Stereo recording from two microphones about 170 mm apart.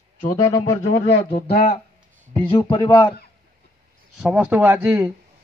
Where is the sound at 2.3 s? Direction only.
30° left (ahead or behind).